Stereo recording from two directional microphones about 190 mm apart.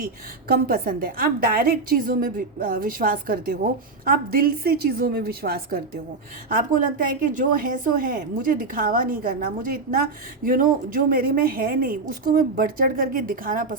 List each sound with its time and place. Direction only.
0.0 s a woman's voice: 50° right (ahead or behind)